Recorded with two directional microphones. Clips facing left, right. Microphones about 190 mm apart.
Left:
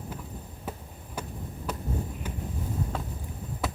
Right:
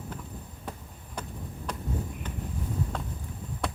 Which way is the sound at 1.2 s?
5° left (ahead or behind).